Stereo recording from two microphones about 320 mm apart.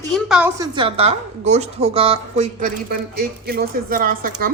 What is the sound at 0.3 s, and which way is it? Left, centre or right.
A woman's voice, centre.